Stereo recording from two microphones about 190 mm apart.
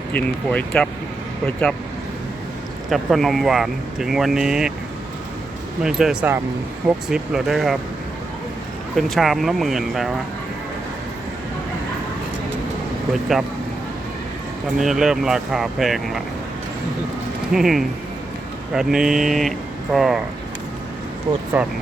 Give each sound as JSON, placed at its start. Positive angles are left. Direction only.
{"t": 0.1, "sound": "speech", "side_deg": 5}
{"t": 2.9, "sound": "speech", "side_deg": 0}
{"t": 5.8, "sound": "speech", "side_deg": -5}
{"t": 9.0, "sound": "speech", "side_deg": 0}
{"t": 14.8, "sound": "speech", "side_deg": 0}
{"t": 17.5, "sound": "speech", "side_deg": 0}
{"t": 21.5, "sound": "speech", "side_deg": -5}